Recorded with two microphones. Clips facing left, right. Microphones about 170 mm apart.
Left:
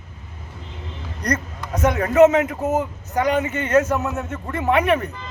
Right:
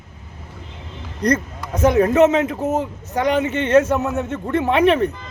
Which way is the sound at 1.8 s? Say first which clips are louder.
Right 1 dB; 25° right (ahead or behind).